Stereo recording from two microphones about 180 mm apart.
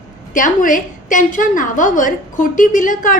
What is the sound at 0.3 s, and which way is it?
A woman's voice, 45° left (ahead or behind).